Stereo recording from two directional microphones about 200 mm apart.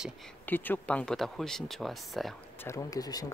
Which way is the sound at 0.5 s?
10° left (ahead or behind).